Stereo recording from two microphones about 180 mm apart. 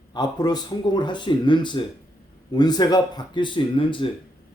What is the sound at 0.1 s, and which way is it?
Speech, 25° left (ahead or behind).